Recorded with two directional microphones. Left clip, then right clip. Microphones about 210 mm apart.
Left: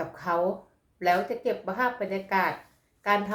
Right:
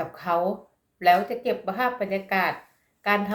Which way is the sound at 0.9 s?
5° left (ahead or behind).